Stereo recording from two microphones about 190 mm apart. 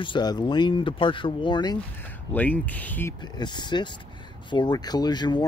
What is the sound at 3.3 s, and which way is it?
Speech, 25° left (ahead or behind).